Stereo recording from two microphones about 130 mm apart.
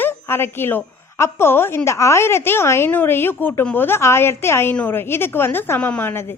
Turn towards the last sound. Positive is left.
turn(degrees=20)  # may be behind; listen again after turning